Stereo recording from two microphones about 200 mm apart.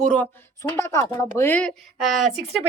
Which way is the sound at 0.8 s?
15° left (ahead or behind).